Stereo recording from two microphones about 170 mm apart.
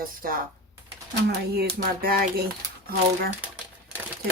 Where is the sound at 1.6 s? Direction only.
65° right (ahead or behind).